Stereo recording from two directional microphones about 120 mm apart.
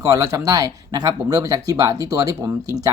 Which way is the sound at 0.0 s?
30° right (ahead or behind).